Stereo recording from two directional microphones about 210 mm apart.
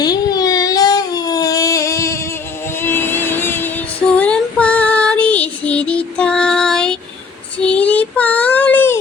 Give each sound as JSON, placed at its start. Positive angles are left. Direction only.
{"t": 0.0, "sound": "a sound", "side_deg": 20}
{"t": 2.8, "sound": "female singing", "side_deg": 10}
{"t": 7.6, "sound": "child singing", "side_deg": 5}